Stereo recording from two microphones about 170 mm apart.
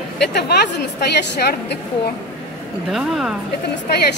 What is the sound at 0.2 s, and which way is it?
A woman's voice, 75° left (ahead or behind).